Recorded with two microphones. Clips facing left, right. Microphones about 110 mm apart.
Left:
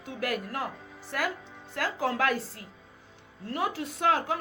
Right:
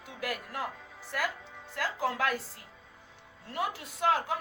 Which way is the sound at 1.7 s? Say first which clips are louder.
Left 3 dB; 55° left (ahead or behind).